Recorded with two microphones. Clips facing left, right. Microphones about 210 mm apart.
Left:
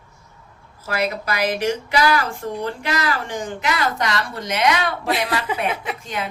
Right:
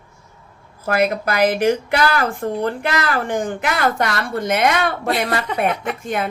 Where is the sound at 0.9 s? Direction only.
55° right (ahead or behind).